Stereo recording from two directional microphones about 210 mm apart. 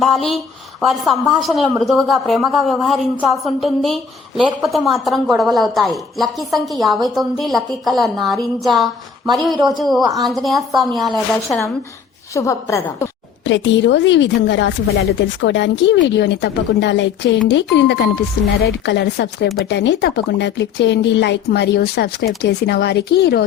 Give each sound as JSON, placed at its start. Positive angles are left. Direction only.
{"t": 0.0, "sound": "a woman's voice", "side_deg": 0}
{"t": 12.3, "sound": "a woman's voice", "side_deg": 15}
{"t": 13.4, "sound": "speech", "side_deg": 60}